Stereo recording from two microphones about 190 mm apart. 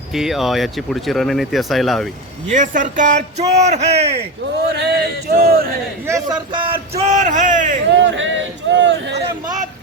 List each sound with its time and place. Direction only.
0.1 s speech: centre (ahead or behind)
2.5 s a man's voice: 40° right (ahead or behind)
4.8 s speech: 55° right (ahead or behind)
6.1 s a man's voice: 20° right (ahead or behind); by 7.8 s 40° right (ahead or behind)
7.9 s speech: 75° right (ahead or behind)